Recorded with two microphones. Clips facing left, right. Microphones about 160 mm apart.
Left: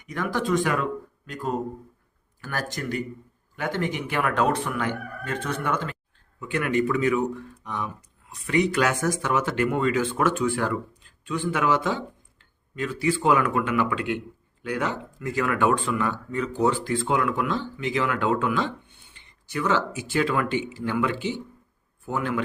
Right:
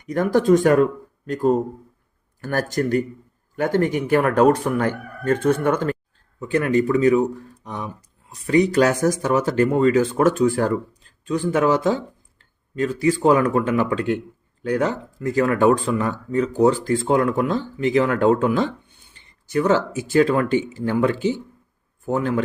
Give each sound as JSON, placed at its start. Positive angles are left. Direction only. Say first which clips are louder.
{"t": 0.1, "sound": "a man's voice", "louder": "right 9 dB", "side_deg": -45}